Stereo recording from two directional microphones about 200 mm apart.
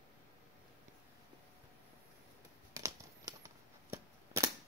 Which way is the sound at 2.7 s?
15° right (ahead or behind).